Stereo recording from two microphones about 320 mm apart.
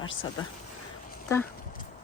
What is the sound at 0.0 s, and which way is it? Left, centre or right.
Speech, left.